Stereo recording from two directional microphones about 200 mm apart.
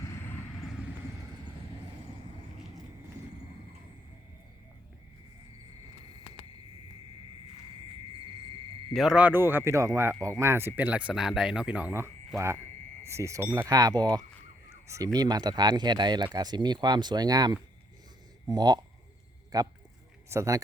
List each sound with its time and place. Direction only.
8.9 s speech: centre (ahead or behind)